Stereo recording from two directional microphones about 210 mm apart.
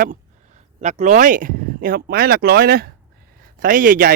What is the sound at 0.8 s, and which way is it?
A man's voice, 35° right (ahead or behind).